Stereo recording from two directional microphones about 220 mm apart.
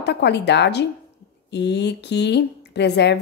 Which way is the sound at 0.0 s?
50° left (ahead or behind).